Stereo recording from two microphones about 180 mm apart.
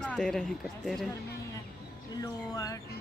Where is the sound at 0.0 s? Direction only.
5° left (ahead or behind).